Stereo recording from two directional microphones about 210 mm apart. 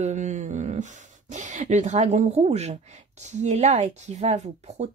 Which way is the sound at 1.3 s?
35° right (ahead or behind).